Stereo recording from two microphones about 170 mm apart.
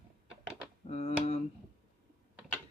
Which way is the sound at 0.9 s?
40° left (ahead or behind).